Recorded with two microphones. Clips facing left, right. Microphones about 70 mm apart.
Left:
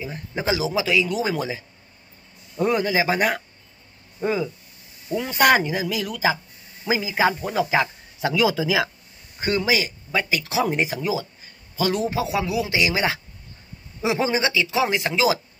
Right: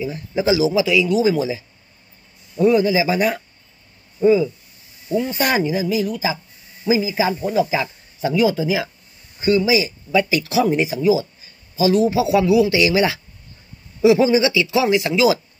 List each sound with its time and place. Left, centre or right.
0.0 s speech: left
2.6 s speech: left
8.2 s speech: left
9.4 s speech: left
10.4 s speech: left
12.3 s a man's voice: left